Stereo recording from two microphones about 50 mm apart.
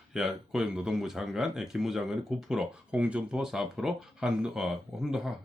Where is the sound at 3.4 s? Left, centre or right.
Centre.